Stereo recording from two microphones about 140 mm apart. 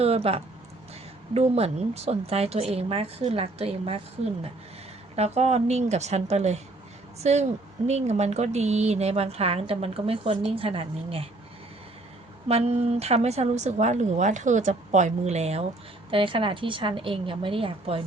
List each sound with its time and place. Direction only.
0.0 s speech: 45° right (ahead or behind)
12.5 s speech: 45° right (ahead or behind)
16.0 s a woman's voice: 35° right (ahead or behind)